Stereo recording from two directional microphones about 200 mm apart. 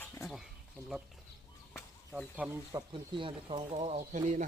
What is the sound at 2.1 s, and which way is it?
Speech, 5° right (ahead or behind).